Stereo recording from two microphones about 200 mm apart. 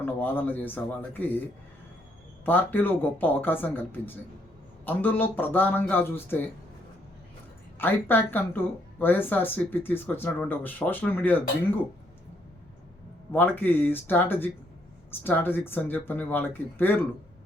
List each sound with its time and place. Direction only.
0.0 s speech: 10° left (ahead or behind)
2.4 s speech: 10° left (ahead or behind)
7.8 s speech: 10° left (ahead or behind)
13.3 s speech: 10° left (ahead or behind)